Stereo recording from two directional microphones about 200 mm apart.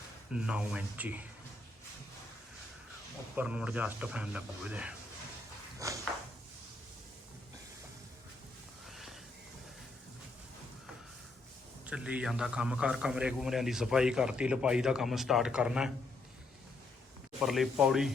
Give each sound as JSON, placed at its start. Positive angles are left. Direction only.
{"t": 0.3, "sound": "speech", "side_deg": -5}
{"t": 3.3, "sound": "a man's voice", "side_deg": -5}
{"t": 5.8, "sound": "speech", "side_deg": -15}
{"t": 8.9, "sound": "a sound", "side_deg": 0}
{"t": 11.9, "sound": "a man's voice", "side_deg": -5}
{"t": 17.4, "sound": "a man's voice", "side_deg": 0}